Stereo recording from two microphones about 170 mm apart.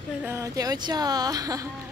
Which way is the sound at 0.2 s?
15° right (ahead or behind).